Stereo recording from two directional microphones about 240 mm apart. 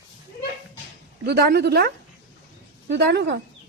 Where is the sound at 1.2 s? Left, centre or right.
Right.